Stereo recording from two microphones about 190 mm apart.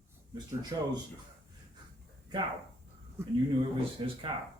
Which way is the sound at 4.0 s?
25° right (ahead or behind).